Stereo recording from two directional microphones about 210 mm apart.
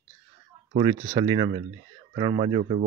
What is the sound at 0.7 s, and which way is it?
Speech, 25° right (ahead or behind).